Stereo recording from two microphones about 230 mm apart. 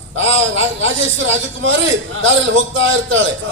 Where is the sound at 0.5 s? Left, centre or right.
Right.